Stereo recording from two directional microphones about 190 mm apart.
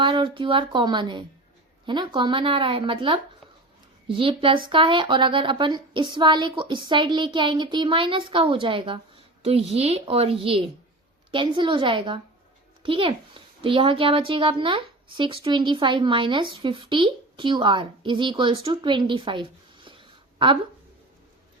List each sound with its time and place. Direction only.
0.0 s a child's voice: 25° right (ahead or behind)